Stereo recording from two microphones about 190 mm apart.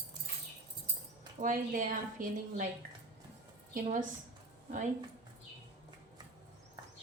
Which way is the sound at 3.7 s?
45° right (ahead or behind).